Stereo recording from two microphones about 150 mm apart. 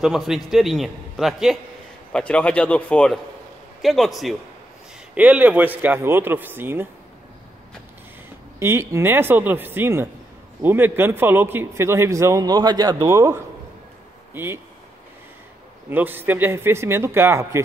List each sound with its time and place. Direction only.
0.0 s a man's voice: centre (ahead or behind)
8.5 s a man's voice: 15° right (ahead or behind)
15.9 s a man's voice: 15° right (ahead or behind)